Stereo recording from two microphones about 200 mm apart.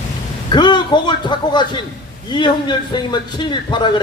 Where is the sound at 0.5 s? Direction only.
20° left (ahead or behind).